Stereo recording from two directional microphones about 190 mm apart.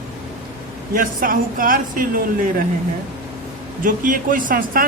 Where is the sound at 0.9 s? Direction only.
45° right (ahead or behind).